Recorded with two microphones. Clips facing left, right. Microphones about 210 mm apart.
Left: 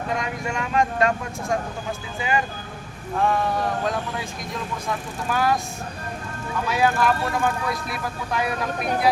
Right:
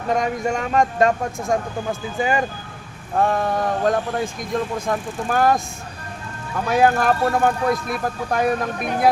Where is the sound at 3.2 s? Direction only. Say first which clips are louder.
Right 3 dB; 45° right (ahead or behind).